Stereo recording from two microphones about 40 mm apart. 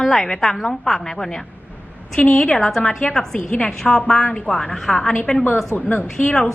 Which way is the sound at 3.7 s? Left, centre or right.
Centre.